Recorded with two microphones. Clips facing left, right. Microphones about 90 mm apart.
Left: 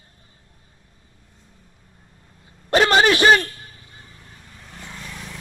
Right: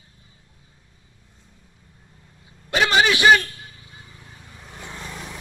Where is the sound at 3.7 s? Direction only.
45° left (ahead or behind).